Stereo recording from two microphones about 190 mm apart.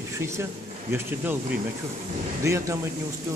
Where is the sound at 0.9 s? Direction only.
10° right (ahead or behind).